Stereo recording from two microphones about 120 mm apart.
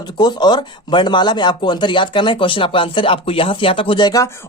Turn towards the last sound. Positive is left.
turn(degrees=35)  # may be behind; listen again after turning